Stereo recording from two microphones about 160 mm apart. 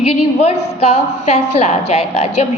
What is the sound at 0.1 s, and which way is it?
A woman's voice, 40° left (ahead or behind).